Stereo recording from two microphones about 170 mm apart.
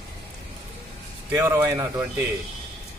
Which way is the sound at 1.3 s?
20° right (ahead or behind).